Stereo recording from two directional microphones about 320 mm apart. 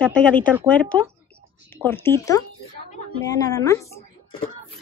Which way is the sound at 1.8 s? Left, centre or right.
Centre.